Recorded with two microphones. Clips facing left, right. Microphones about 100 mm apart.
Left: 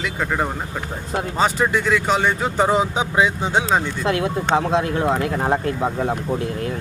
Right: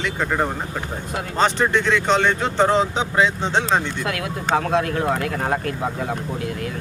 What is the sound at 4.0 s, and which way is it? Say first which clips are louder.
Speech: left 5 dB; 25° left (ahead or behind).